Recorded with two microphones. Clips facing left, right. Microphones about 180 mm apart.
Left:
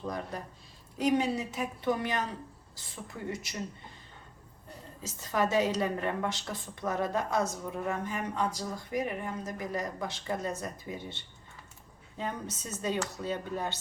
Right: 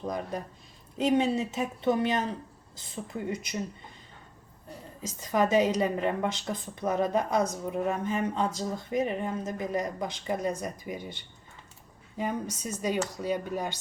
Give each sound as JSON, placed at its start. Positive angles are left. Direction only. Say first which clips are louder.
{"t": 0.0, "sound": "a woman's voice", "louder": "right 3 dB", "side_deg": -20}
{"t": 5.0, "sound": "a woman's voice", "louder": "right 4 dB", "side_deg": -15}